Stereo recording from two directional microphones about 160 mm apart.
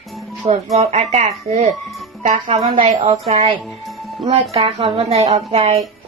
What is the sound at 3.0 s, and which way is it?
Speech, 35° right (ahead or behind).